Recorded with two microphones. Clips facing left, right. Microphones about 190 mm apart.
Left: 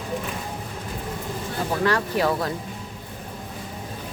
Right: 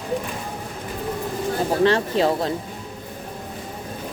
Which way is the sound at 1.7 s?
25° right (ahead or behind).